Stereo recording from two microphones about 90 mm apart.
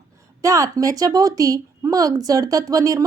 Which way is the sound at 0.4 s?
35° right (ahead or behind).